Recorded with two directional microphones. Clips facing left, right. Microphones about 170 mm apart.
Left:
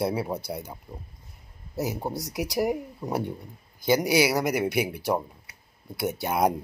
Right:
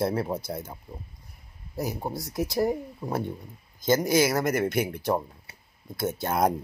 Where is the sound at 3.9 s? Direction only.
15° left (ahead or behind).